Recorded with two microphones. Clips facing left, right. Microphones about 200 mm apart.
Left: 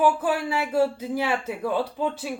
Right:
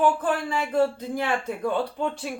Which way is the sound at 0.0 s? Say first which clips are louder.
Left 1 dB; 10° left (ahead or behind).